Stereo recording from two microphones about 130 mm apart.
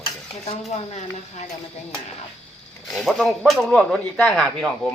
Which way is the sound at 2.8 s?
Centre (ahead or behind).